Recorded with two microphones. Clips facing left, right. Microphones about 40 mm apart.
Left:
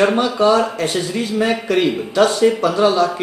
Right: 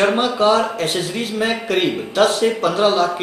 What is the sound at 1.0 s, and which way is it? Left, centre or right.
A man's voice, right.